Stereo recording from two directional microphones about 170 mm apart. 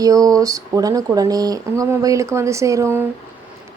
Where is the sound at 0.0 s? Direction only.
20° right (ahead or behind).